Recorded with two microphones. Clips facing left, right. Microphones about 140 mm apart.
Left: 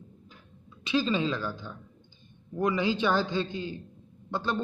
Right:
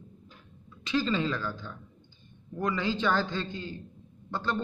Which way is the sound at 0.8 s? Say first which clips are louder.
Left 1 dB; 15° left (ahead or behind).